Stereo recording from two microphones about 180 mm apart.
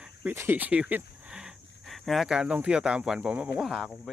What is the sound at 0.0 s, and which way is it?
Speech, 10° right (ahead or behind).